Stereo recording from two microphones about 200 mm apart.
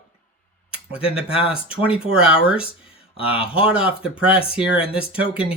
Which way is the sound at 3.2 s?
30° left (ahead or behind).